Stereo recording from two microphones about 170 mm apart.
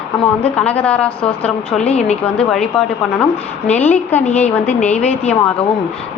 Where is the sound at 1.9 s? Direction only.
40° left (ahead or behind).